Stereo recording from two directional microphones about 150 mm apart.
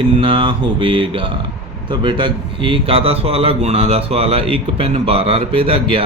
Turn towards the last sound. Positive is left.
turn(degrees=-35)  # may be behind; listen again after turning